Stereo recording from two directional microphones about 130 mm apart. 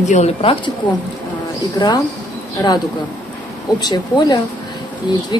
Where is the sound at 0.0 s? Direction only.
65° left (ahead or behind).